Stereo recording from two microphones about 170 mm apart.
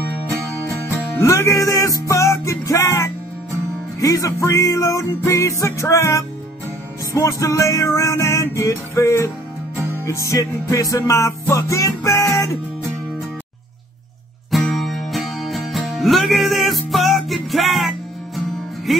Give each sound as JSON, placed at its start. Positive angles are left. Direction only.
{"t": 1.2, "sound": "music", "side_deg": 20}
{"t": 14.7, "sound": "music", "side_deg": 0}
{"t": 18.9, "sound": "music", "side_deg": 0}